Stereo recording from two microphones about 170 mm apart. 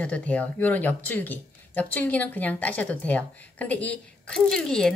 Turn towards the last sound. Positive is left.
turn(degrees=5)  # may be behind; listen again after turning